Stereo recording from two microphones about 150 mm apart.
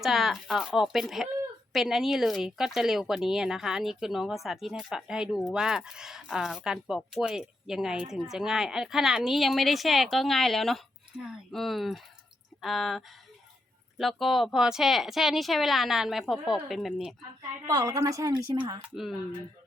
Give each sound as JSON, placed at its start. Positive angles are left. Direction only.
{"t": 0.0, "sound": "speech", "side_deg": 0}
{"t": 17.7, "sound": "speech", "side_deg": -25}